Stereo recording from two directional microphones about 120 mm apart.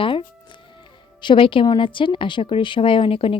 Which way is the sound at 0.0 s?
45° left (ahead or behind).